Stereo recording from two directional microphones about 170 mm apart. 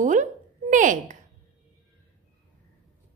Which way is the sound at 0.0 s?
50° right (ahead or behind).